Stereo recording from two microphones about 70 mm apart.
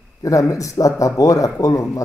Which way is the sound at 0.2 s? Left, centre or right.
Left.